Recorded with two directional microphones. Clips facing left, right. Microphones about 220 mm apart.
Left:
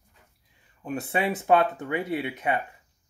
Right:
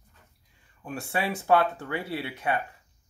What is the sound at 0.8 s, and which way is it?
Speech, 20° left (ahead or behind).